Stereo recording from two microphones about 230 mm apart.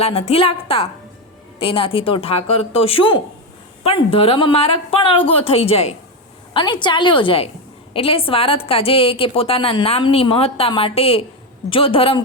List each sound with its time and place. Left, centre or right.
0.0 s a woman's voice: left